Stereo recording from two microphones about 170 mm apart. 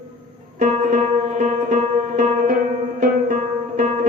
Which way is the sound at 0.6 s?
45° right (ahead or behind).